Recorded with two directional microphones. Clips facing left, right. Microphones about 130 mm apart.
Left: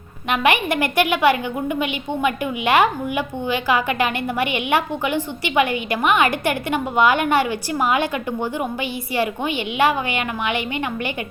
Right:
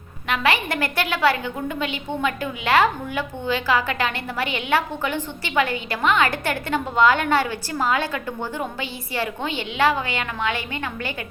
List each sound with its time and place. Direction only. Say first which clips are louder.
0.3 s a woman's voice: left 3 dB; 20° left (ahead or behind)